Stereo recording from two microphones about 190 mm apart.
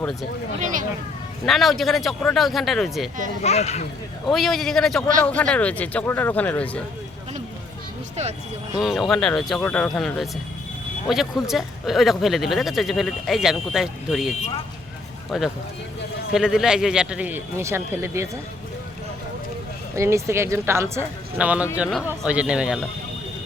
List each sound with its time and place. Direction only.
0.0 s speech: centre (ahead or behind)
0.6 s speech: 45° right (ahead or behind)
1.5 s speech: centre (ahead or behind)
3.4 s speech: 35° left (ahead or behind)
4.3 s speech: centre (ahead or behind)
8.1 s speech: 35° right (ahead or behind)
8.8 s speech: centre (ahead or behind)
20.0 s a woman's voice: 15° right (ahead or behind)